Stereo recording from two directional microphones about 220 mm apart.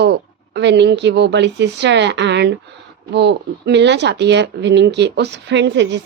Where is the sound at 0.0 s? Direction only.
50° right (ahead or behind).